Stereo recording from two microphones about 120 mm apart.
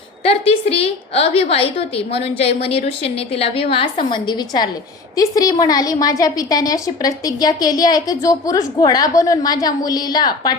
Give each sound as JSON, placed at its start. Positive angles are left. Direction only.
{"t": 0.3, "sound": "a woman's voice", "side_deg": 55}